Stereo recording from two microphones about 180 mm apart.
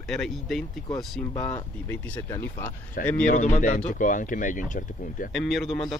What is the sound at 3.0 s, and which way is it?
Speech, 50° left (ahead or behind).